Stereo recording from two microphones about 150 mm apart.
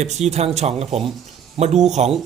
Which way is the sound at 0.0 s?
50° right (ahead or behind).